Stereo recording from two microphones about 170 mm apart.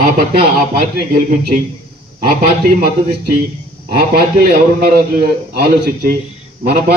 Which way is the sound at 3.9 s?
65° right (ahead or behind).